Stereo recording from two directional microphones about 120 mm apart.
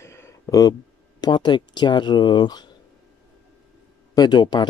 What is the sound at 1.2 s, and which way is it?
Speech, 40° left (ahead or behind).